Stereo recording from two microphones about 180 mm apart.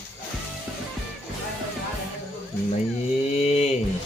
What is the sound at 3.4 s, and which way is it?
Mantra, 35° left (ahead or behind).